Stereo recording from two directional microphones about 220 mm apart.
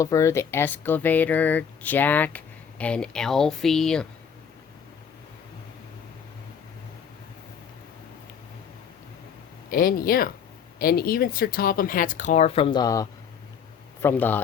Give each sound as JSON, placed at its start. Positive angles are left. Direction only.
{"t": 0.0, "sound": "speech", "side_deg": 15}
{"t": 9.6, "sound": "speech", "side_deg": 40}